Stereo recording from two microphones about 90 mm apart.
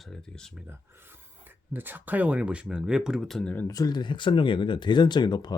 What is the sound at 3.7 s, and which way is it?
Speech, 45° left (ahead or behind).